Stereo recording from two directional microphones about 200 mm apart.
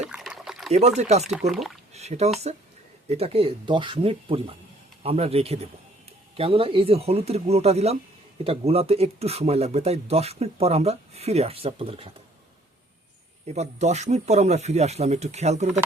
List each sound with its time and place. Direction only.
0.0 s a sound: 5° right (ahead or behind)
0.9 s speech: 35° right (ahead or behind)
1.2 s speech: centre (ahead or behind)
1.9 s speech: 35° right (ahead or behind)
13.5 s speech: 35° right (ahead or behind)